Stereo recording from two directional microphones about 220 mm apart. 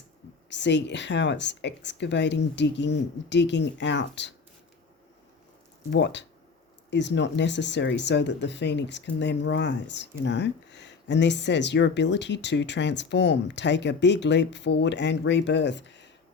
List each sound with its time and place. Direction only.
0.5 s speech: 55° left (ahead or behind)
5.9 s speech: 55° left (ahead or behind)